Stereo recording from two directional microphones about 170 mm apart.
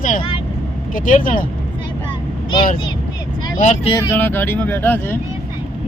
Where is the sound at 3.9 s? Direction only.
15° left (ahead or behind).